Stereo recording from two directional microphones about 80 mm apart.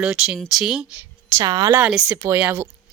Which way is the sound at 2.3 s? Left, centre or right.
Right.